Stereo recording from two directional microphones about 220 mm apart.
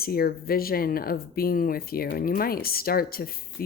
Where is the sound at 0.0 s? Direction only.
45° left (ahead or behind).